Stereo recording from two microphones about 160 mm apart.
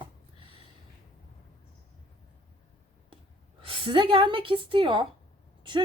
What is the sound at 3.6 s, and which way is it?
Speech, 35° right (ahead or behind).